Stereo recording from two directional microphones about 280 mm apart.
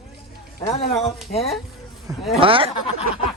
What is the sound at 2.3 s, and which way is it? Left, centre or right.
Speech, centre.